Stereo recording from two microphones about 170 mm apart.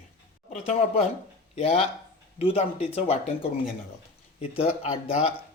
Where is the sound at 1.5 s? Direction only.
35° left (ahead or behind).